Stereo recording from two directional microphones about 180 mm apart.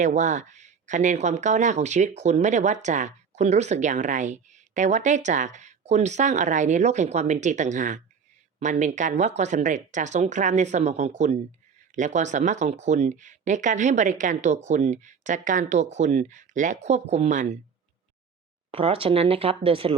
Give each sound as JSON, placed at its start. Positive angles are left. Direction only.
{"t": 0.0, "sound": "speech", "side_deg": -40}
{"t": 18.7, "sound": "speech", "side_deg": -30}